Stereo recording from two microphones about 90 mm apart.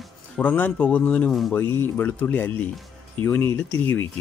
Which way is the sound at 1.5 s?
25° left (ahead or behind).